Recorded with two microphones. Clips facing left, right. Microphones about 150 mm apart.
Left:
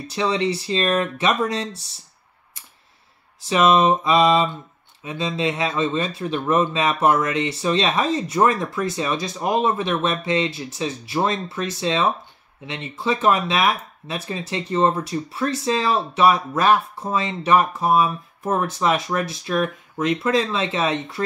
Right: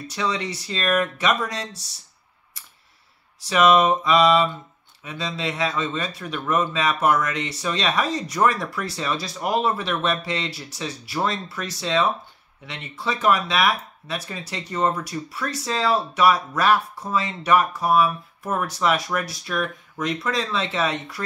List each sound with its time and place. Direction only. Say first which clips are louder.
0.1 s speech: left 5 dB; 25° left (ahead or behind)
3.4 s speech: left 1 dB; 25° left (ahead or behind)